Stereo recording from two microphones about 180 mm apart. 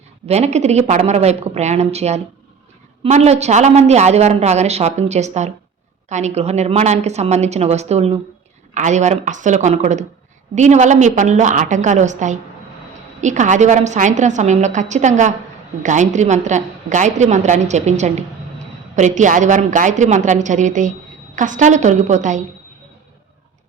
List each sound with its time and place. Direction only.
0.3 s a woman's voice: 35° right (ahead or behind)